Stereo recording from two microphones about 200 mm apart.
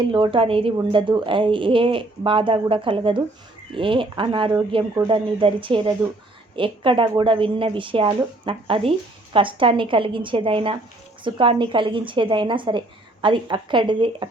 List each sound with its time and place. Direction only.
0.0 s a woman's voice: 25° right (ahead or behind)